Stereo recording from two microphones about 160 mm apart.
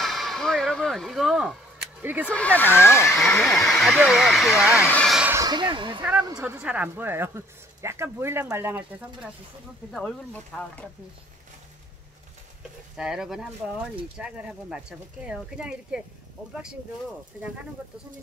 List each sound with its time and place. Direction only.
0.0 s a sound: centre (ahead or behind)
2.2 s speech: 10° left (ahead or behind)
3.1 s speech: centre (ahead or behind)
5.1 s a sound: 10° right (ahead or behind)
5.4 s speech: 25° right (ahead or behind)
6.4 s speech: 10° right (ahead or behind)
9.9 s speech: 5° left (ahead or behind)
12.9 s speech: 5° right (ahead or behind)